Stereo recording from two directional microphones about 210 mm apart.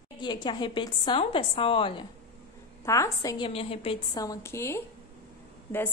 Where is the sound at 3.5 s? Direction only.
30° left (ahead or behind).